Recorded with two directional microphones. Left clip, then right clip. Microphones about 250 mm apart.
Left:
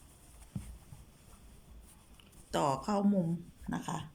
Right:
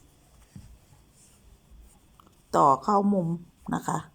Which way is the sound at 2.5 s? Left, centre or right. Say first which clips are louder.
Right 12 dB; centre.